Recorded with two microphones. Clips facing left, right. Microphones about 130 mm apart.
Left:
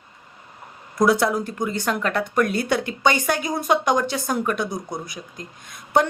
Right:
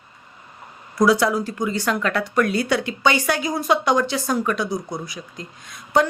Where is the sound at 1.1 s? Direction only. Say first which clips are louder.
Right 2 dB; 50° left (ahead or behind).